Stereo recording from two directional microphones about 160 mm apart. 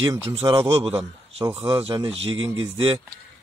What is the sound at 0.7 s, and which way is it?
Speech, 35° right (ahead or behind).